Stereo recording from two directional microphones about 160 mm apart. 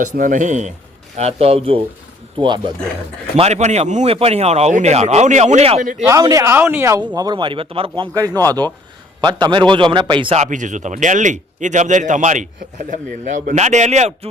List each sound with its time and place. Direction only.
0.0 s speech: 55° right (ahead or behind); by 2.7 s 30° right (ahead or behind)
3.3 s speech: 45° right (ahead or behind)
6.1 s speech: 20° right (ahead or behind)
7.2 s speech: 25° right (ahead or behind)
8.1 s speech: 20° right (ahead or behind)
10.3 s speech: 45° right (ahead or behind)